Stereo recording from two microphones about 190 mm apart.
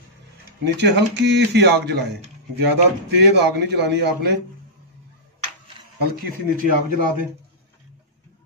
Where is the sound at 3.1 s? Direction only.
60° right (ahead or behind).